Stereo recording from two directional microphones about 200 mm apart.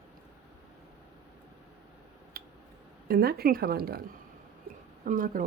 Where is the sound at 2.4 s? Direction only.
50° right (ahead or behind).